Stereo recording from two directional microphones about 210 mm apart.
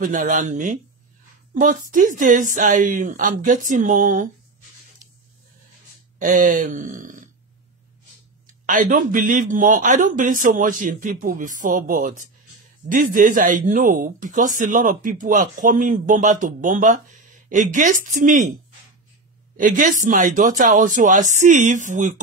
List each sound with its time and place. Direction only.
0.0 s speech: 40° right (ahead or behind)
5.0 s a sound: 40° right (ahead or behind)
6.1 s speech: 40° right (ahead or behind)
8.6 s speech: 40° right (ahead or behind)
19.5 s speech: 40° right (ahead or behind)